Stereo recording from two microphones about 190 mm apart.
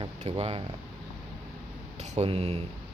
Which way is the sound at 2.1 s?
35° right (ahead or behind).